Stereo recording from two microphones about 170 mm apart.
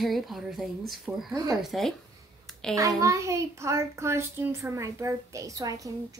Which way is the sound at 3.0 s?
20° right (ahead or behind).